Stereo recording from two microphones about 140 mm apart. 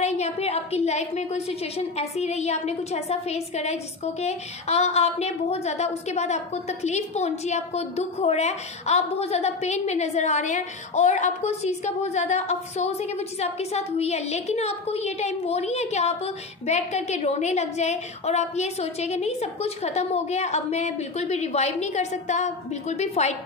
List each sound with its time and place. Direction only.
0.0 s a woman's voice: 50° left (ahead or behind)